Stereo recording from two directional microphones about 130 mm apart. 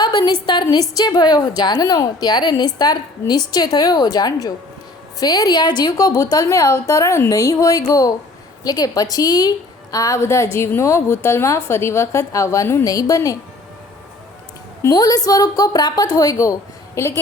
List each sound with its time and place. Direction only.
0.0 s a sound: 35° left (ahead or behind)
0.4 s a woman's voice: 35° left (ahead or behind)
14.8 s a woman's voice: 30° left (ahead or behind)